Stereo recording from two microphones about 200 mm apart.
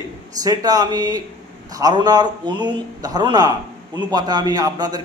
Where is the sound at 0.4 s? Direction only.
20° right (ahead or behind).